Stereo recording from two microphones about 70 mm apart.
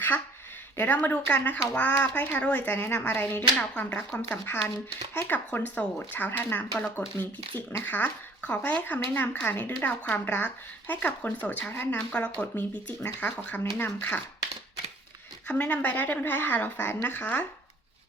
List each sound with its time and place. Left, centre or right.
0.8 s speech: left
2.7 s a woman's voice: left
3.0 s speech: centre
15.4 s speech: left